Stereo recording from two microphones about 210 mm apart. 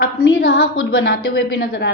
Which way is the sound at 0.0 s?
45° left (ahead or behind).